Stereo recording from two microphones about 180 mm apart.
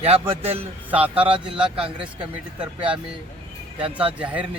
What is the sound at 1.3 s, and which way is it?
Speech, 30° right (ahead or behind).